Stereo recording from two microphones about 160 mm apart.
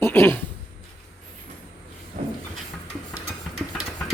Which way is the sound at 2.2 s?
50° right (ahead or behind).